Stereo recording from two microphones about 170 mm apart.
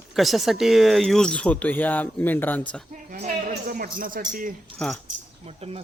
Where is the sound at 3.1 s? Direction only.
50° right (ahead or behind).